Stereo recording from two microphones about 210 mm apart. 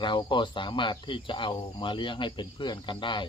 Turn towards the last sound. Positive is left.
turn(degrees=25)  # may be behind; listen again after turning